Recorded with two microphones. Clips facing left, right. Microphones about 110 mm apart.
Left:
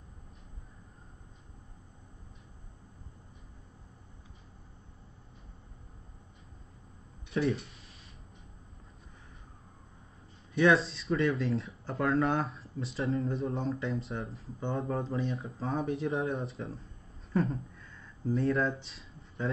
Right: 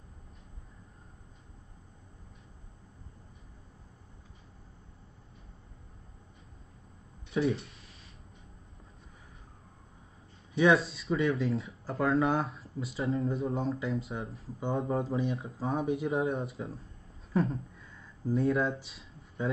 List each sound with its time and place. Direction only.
7.2 s speech: centre (ahead or behind)
10.5 s speech: centre (ahead or behind)
17.3 s a sound: centre (ahead or behind)